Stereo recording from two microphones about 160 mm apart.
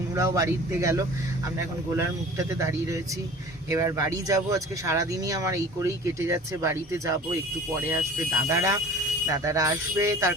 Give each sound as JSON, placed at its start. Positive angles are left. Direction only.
{"t": 0.2, "sound": "speech", "side_deg": -20}
{"t": 8.4, "sound": "speech", "side_deg": -20}